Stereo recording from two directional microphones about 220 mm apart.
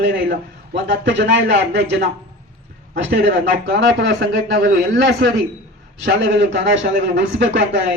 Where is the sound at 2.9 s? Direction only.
55° right (ahead or behind).